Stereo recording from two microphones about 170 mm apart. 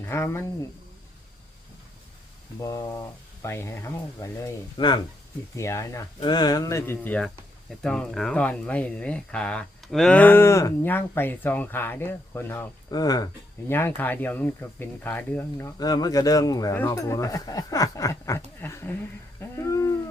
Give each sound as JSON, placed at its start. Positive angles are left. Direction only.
{"t": 0.0, "sound": "speech", "side_deg": 15}
{"t": 2.6, "sound": "speech", "side_deg": 20}
{"t": 19.4, "sound": "a sound", "side_deg": 15}